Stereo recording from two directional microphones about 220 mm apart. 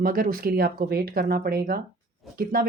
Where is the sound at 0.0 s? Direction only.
40° right (ahead or behind).